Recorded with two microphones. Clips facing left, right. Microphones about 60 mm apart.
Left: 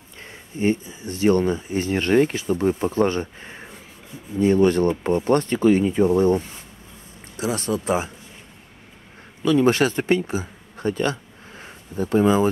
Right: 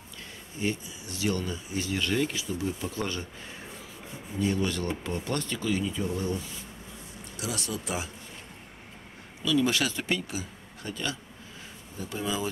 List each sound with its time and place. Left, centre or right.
0.6 s speech: left
9.4 s speech: left